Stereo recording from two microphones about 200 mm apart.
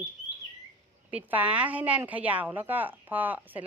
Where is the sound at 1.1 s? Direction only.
10° right (ahead or behind).